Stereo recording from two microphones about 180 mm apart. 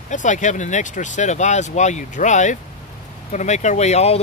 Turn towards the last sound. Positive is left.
turn(degrees=35)  # may be behind; listen again after turning